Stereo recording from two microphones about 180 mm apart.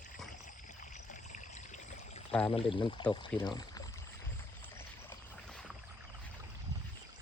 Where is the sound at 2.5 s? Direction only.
30° left (ahead or behind).